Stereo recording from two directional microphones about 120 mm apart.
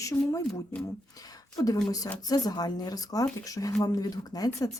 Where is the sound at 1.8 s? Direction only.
30° left (ahead or behind).